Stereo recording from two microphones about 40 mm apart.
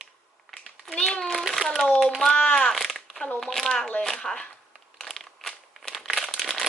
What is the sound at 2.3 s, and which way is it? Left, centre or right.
Speech, left.